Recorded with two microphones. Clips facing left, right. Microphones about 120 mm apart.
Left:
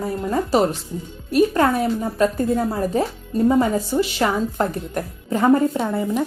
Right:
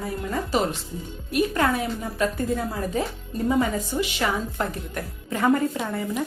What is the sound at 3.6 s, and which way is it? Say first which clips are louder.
Speech: left 5 dB; 35° left (ahead or behind).